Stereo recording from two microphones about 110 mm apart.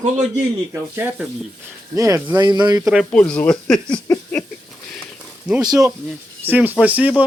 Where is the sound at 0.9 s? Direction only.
20° right (ahead or behind).